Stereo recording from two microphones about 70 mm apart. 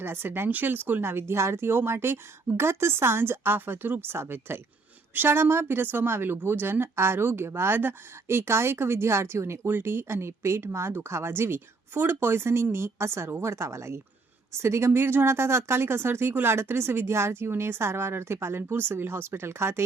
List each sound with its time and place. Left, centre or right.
0.0 s speech: right